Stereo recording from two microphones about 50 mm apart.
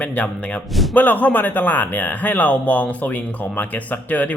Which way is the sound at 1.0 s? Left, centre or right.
Left.